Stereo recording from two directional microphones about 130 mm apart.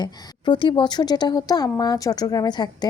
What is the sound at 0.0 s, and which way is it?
A child's voice, 35° left (ahead or behind).